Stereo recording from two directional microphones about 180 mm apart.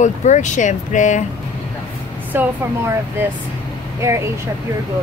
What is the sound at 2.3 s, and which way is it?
Speech, 10° right (ahead or behind).